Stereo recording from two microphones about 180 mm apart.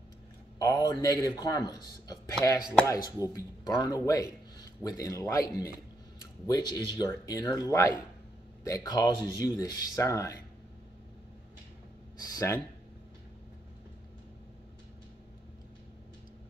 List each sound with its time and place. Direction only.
0.6 s a man's voice: 20° left (ahead or behind)
12.2 s speech: 15° left (ahead or behind)